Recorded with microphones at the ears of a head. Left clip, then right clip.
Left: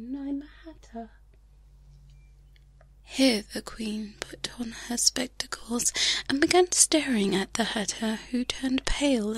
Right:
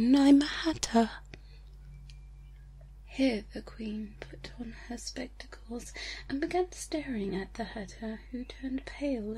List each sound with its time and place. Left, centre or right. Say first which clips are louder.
0.0 s a woman's voice: right 12 dB; right
3.1 s speech: left 6 dB; left